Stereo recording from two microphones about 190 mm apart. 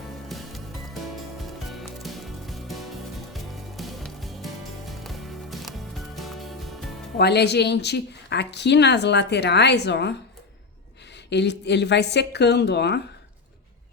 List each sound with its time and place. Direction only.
0.3 s music: centre (ahead or behind)
1.7 s music: centre (ahead or behind)
7.2 s a woman's voice: 60° left (ahead or behind)
11.3 s a woman's voice: 65° left (ahead or behind)